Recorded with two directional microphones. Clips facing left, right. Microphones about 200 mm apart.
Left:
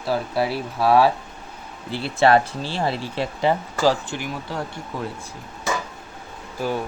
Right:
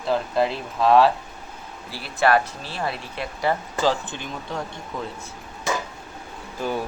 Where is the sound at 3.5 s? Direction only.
10° left (ahead or behind).